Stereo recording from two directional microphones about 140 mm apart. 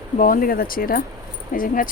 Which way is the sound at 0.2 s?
80° left.